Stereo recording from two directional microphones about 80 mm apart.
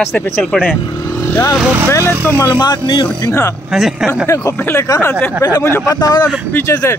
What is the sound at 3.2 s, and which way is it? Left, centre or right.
Speech, left.